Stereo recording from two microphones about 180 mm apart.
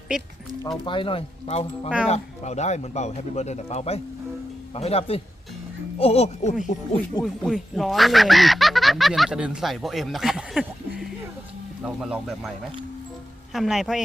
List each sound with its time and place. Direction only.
0.9 s a man's voice: 30° left (ahead or behind)
7.2 s speech: centre (ahead or behind)
13.5 s speech: centre (ahead or behind)